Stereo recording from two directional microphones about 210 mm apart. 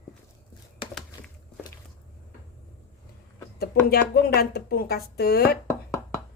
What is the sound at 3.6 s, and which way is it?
A woman's voice, 45° left (ahead or behind).